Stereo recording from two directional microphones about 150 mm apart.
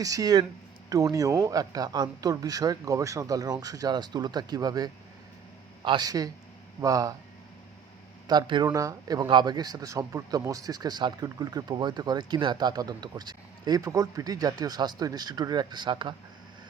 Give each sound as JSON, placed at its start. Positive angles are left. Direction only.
{"t": 0.0, "sound": "speech", "side_deg": -25}
{"t": 8.3, "sound": "speech", "side_deg": -30}